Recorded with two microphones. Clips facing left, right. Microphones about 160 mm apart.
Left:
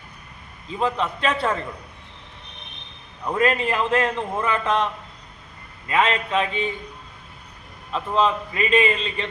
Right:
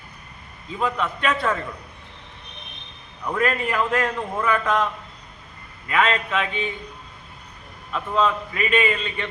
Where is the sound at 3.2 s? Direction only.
25° left (ahead or behind).